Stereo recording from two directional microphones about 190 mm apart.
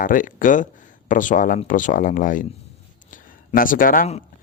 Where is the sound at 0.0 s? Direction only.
45° left (ahead or behind).